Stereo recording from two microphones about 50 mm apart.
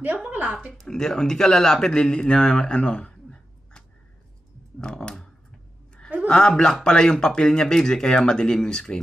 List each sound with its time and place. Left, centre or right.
0.0 s speech: right
0.7 s speech: centre